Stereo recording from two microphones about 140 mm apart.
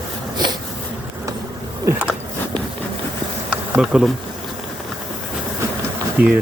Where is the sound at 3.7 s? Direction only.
5° right (ahead or behind).